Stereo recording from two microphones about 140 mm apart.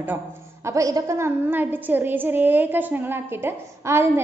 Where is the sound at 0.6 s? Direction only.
25° right (ahead or behind).